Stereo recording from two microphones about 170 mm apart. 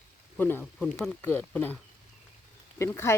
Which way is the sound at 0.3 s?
10° left (ahead or behind).